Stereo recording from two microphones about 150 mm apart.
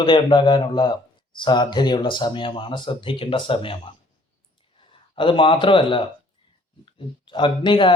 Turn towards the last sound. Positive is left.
turn(degrees=35)  # may be behind; listen again after turning